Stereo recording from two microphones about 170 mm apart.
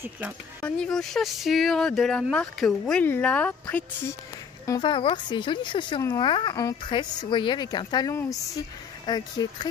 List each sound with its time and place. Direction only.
0.6 s speech: 5° left (ahead or behind)
4.6 s speech: 25° left (ahead or behind)